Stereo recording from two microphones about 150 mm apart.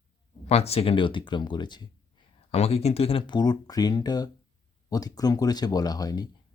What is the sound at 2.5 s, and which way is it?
Speech, 45° left (ahead or behind).